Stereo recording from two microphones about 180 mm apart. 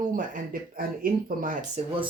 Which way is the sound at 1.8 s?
35° right (ahead or behind).